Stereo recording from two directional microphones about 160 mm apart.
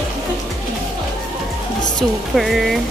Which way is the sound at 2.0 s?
Centre (ahead or behind).